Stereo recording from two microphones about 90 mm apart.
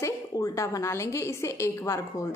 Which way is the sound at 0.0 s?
35° left (ahead or behind).